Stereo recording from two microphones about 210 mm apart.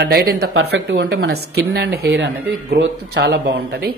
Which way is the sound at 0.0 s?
50° right (ahead or behind).